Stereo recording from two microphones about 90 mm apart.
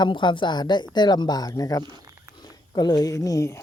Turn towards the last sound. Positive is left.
turn(degrees=40)  # may be behind; listen again after turning